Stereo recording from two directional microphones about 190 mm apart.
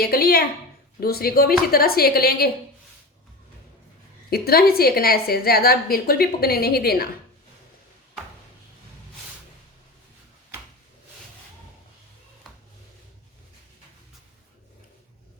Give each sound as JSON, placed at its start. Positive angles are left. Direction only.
{"t": 0.0, "sound": "a woman's voice", "side_deg": 50}
{"t": 4.3, "sound": "a woman's voice", "side_deg": 55}